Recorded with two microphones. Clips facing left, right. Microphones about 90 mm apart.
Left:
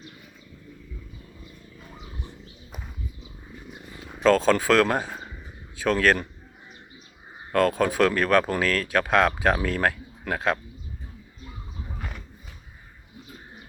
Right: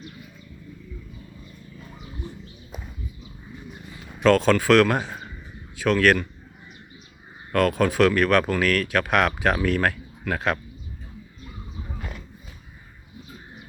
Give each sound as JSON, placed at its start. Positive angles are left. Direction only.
{"t": 4.4, "sound": "speech", "side_deg": 25}
{"t": 7.5, "sound": "speech", "side_deg": 25}